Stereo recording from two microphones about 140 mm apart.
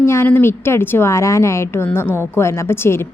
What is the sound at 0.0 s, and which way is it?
A woman's voice, 20° left (ahead or behind).